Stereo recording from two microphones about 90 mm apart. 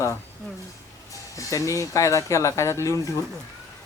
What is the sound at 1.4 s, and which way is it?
Speech, 35° left (ahead or behind).